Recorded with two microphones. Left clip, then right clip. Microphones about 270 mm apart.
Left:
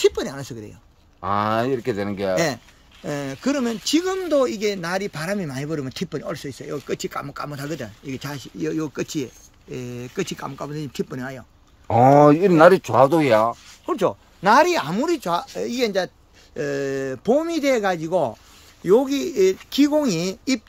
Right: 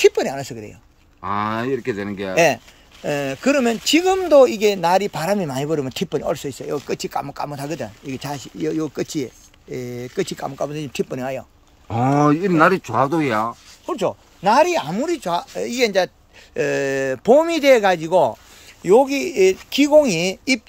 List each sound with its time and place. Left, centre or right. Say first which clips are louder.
0.0 s speech: right 5 dB; centre
1.2 s speech: left 1 dB; left
2.3 s speech: right 11 dB; centre
11.9 s speech: left 5 dB; centre; by 13.9 s left
14.4 s speech: even; centre